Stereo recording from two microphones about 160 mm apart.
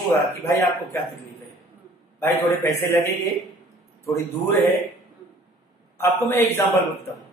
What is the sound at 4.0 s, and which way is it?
Speech, 15° left (ahead or behind).